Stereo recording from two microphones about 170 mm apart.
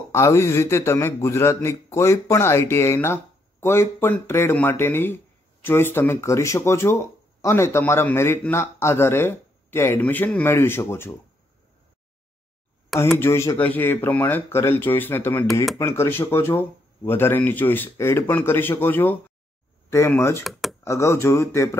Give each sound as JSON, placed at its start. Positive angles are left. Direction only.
{"t": 0.1, "sound": "speech", "side_deg": 15}
{"t": 13.2, "sound": "speech", "side_deg": 15}